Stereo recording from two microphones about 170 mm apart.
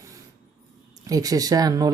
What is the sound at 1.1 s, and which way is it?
Speech, 20° right (ahead or behind).